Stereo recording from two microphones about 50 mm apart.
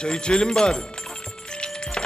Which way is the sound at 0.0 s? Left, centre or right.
Centre.